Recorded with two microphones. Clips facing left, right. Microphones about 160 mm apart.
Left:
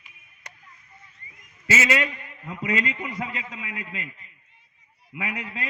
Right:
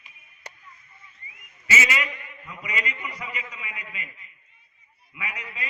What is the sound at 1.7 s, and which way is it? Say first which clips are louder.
Speech: left 3 dB; 75° left (ahead or behind).